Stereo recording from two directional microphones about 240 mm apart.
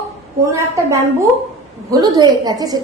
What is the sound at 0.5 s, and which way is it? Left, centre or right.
A woman's voice, centre.